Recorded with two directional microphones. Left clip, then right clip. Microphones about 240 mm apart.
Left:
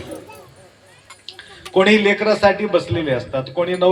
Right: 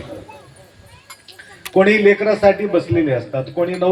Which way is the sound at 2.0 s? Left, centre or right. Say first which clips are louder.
Right 2 dB; left.